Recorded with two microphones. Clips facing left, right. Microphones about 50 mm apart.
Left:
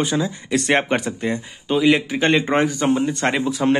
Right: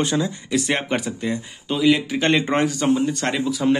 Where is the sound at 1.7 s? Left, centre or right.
Centre.